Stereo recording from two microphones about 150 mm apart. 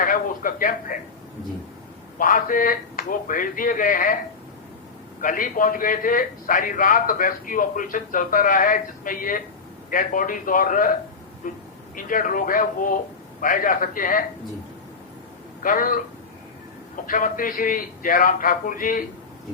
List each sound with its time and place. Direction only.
0.0 s a man's voice: 65° left (ahead or behind)
2.1 s a man's voice: 65° left (ahead or behind)
5.2 s a man's voice: 65° left (ahead or behind)
15.6 s a man's voice: 65° left (ahead or behind)
17.1 s a man's voice: 65° left (ahead or behind)